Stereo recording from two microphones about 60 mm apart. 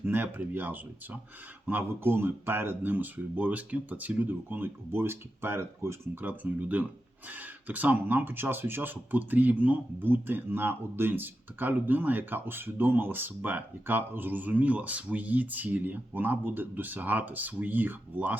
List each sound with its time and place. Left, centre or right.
0.0 s speech: right
6.2 s speech: right